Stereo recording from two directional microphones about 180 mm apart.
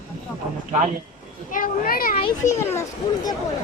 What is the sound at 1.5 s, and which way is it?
Speech, 50° left (ahead or behind).